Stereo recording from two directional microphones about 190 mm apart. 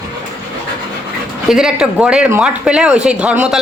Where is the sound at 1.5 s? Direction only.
5° right (ahead or behind).